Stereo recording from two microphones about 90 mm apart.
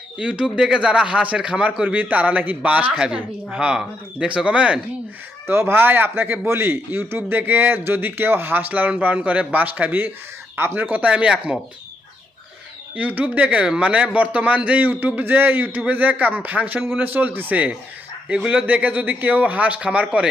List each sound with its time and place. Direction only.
0.2 s a man's voice: 10° right (ahead or behind)
5.5 s a man's voice: 25° right (ahead or behind); by 11.6 s 10° right (ahead or behind)
13.0 s a man's voice: 15° right (ahead or behind)